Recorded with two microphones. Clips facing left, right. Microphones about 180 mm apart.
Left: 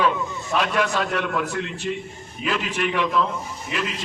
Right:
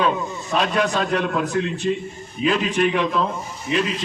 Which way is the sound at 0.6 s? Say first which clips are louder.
Right 2 dB; 35° right (ahead or behind).